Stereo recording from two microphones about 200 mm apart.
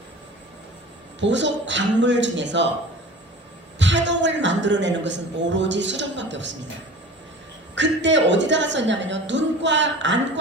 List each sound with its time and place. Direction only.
1.2 s a man's voice: 65° right (ahead or behind)
3.8 s a man's voice: 65° right (ahead or behind)
7.8 s a man's voice: 65° right (ahead or behind)